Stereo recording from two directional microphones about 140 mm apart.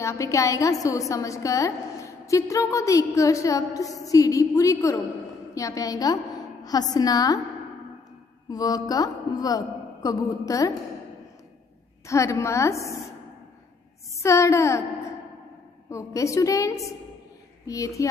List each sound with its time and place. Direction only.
0.0 s a woman's voice: 20° left (ahead or behind)
8.5 s a woman's voice: 25° left (ahead or behind)
12.1 s a woman's voice: 20° left (ahead or behind)
14.1 s a woman's voice: 20° left (ahead or behind)
15.9 s a woman's voice: 20° left (ahead or behind)